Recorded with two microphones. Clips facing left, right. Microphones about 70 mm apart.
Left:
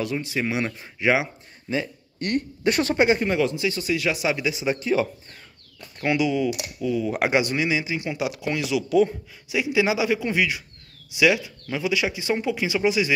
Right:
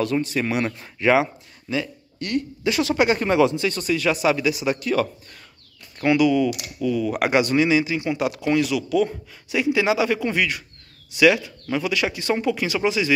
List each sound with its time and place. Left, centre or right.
0.0 s speech: centre
1.7 s speech: left
3.2 s speech: centre
3.6 s speech: centre
6.0 s speech: centre